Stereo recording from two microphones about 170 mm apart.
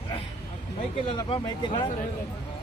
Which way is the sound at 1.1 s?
25° left (ahead or behind).